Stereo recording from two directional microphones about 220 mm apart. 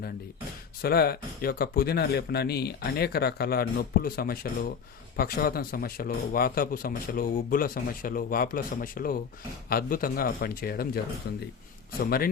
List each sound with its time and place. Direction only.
0.8 s a man's voice: 45° left (ahead or behind)